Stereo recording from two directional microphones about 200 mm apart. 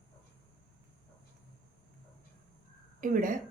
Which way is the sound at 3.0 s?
40° right (ahead or behind).